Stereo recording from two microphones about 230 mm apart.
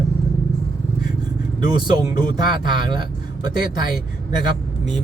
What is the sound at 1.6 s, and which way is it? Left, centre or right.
Speech, centre.